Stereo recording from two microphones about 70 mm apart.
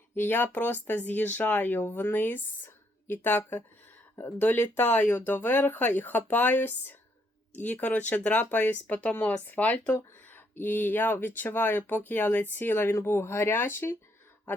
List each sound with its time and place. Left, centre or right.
0.2 s speech: left